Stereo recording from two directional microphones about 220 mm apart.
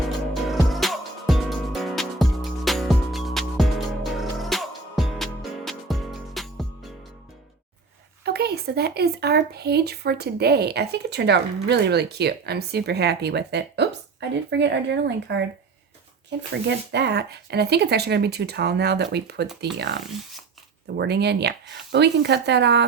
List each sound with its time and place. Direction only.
0.4 s music: centre (ahead or behind)
8.2 s speech: 45° right (ahead or behind)
16.6 s speech: 50° right (ahead or behind)